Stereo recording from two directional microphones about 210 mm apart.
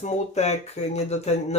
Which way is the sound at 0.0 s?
30° left (ahead or behind).